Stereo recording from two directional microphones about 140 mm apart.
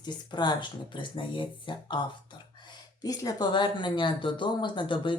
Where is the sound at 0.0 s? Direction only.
30° left (ahead or behind).